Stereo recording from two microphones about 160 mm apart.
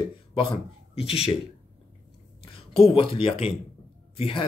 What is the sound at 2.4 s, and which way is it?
A man's voice, 35° left (ahead or behind).